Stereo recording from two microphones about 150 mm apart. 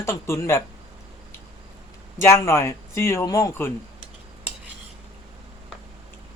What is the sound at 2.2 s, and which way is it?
Speech, 20° left (ahead or behind).